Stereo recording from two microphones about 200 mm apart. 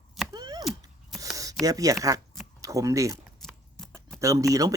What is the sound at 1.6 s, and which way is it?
Speech, 15° right (ahead or behind).